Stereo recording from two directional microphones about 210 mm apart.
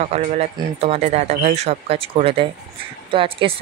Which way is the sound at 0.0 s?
30° right (ahead or behind).